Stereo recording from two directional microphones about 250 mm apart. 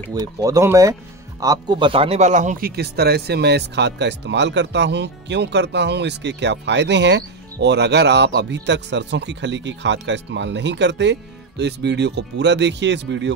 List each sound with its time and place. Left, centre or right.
0.1 s speech: centre; by 13.3 s right